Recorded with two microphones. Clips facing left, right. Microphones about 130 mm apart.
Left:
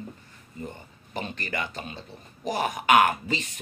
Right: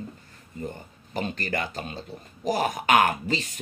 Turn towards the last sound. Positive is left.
turn(degrees=-40)  # may be behind; listen again after turning